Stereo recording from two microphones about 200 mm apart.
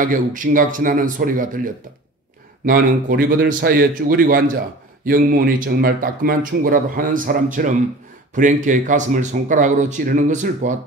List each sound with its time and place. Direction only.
0.0 s speech: 40° right (ahead or behind)